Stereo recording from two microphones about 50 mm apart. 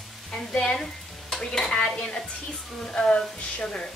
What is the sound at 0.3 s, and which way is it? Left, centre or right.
Stir, centre.